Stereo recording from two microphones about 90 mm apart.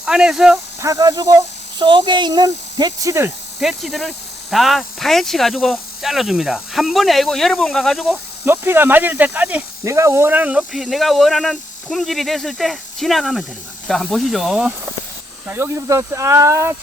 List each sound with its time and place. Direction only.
0.0 s speech: 10° right (ahead or behind)
0.8 s speech: 40° right (ahead or behind)
1.8 s speech: 65° right (ahead or behind); by 3.1 s 50° right (ahead or behind)
3.1 s speech: 30° right (ahead or behind)
3.6 s speech: 5° right (ahead or behind)
8.4 s speech: 25° right (ahead or behind)
9.8 s speech: 35° right (ahead or behind)
10.5 s speech: 5° right (ahead or behind)
15.4 s speech: 25° right (ahead or behind)